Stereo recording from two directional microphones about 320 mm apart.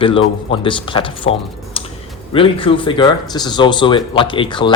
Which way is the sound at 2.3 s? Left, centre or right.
Centre.